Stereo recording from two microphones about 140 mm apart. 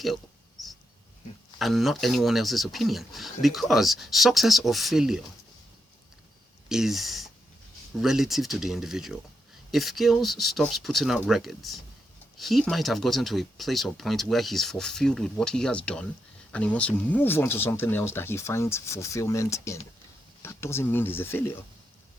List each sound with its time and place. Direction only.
1.5 s speech: centre (ahead or behind)
6.7 s speech: 5° right (ahead or behind); by 21.6 s 15° left (ahead or behind)